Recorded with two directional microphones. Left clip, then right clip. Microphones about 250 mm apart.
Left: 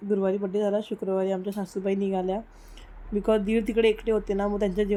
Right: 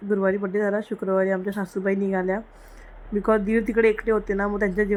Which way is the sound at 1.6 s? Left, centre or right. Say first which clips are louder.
Right 3 dB; centre.